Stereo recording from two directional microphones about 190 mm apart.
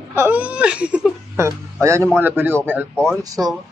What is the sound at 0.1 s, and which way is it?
Speech, 10° right (ahead or behind).